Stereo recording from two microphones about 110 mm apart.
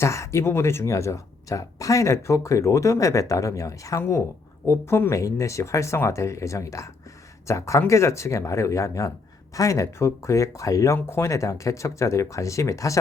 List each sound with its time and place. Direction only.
0.0 s speech: 25° left (ahead or behind)